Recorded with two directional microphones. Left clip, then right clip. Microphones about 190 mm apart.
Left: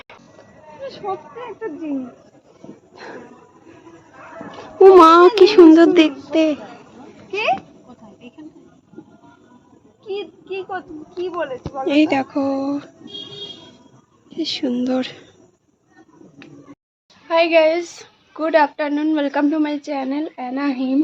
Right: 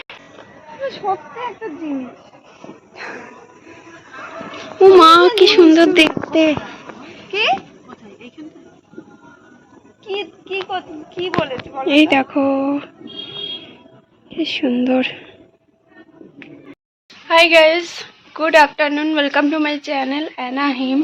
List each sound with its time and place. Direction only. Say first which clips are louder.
1.0 s speech: right 5 dB; 20° right (ahead or behind)
2.9 s a sound: right 5 dB; 15° left (ahead or behind)
4.6 s a woman's voice: right 1 dB; 35° left (ahead or behind)
6.3 s a sound: right 3 dB; centre (ahead or behind)
7.0 s a sound: right 5 dB; 15° left (ahead or behind)
10.1 s a child's voice: right 3 dB; 55° left (ahead or behind)
11.4 s a woman's voice: right 2 dB; 40° left (ahead or behind)
11.9 s speech: right 4 dB; centre (ahead or behind)
14.3 s speech: right 3 dB; centre (ahead or behind)
17.2 s a woman's voice: right 4 dB; centre (ahead or behind)